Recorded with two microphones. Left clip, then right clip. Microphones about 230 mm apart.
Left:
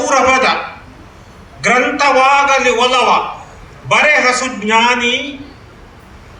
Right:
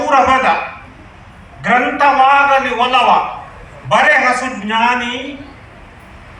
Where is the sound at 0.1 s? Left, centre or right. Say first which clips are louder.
Right 1 dB; left.